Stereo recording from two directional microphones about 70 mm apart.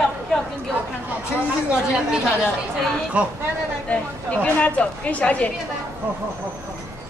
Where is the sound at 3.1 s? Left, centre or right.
Centre.